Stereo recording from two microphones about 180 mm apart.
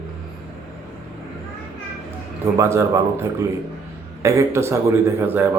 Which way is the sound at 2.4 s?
15° right (ahead or behind).